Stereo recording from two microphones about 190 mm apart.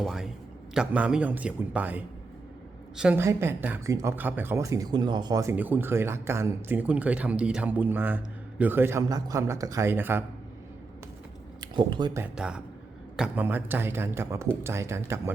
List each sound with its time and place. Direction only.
0.0 s speech: centre (ahead or behind)
11.6 s speech: 25° right (ahead or behind)
12.2 s speech: 5° right (ahead or behind)